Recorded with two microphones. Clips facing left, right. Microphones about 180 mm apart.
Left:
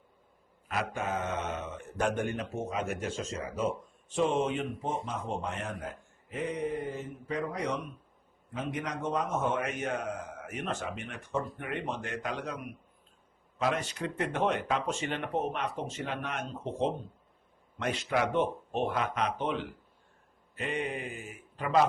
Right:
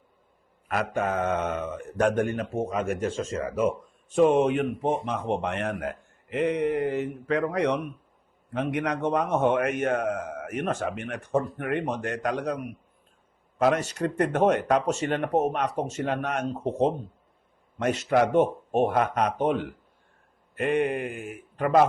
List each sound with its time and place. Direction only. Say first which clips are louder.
0.7 s speech: right 6 dB; 60° right (ahead or behind)
13.6 s speech: right 8 dB; 45° right (ahead or behind)